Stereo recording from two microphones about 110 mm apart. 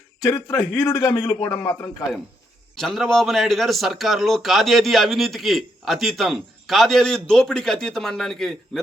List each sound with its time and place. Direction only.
0.2 s a man's voice: 30° left (ahead or behind)
2.7 s a man's voice: centre (ahead or behind)